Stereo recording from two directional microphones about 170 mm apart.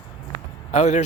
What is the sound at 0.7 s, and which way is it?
Speech, 40° left (ahead or behind).